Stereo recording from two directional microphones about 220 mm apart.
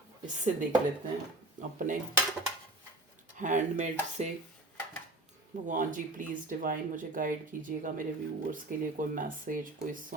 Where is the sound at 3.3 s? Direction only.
35° right (ahead or behind).